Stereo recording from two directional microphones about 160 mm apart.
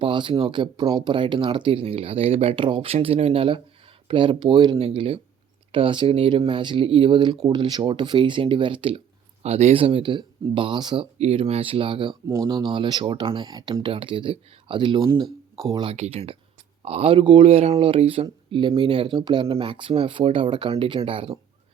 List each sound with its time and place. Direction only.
0.0 s speech: 30° right (ahead or behind)
11.2 s speech: 40° right (ahead or behind)
15.0 s speech: 20° right (ahead or behind)
15.6 s speech: 35° right (ahead or behind)